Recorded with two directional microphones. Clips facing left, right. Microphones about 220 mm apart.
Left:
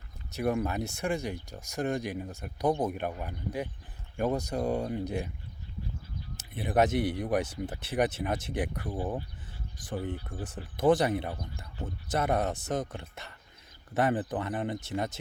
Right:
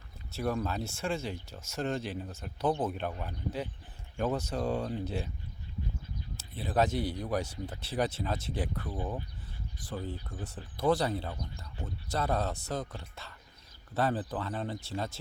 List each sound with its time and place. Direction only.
0.3 s speech: 15° left (ahead or behind)
6.3 s a sound: 20° left (ahead or behind)
6.7 s speech: 20° left (ahead or behind)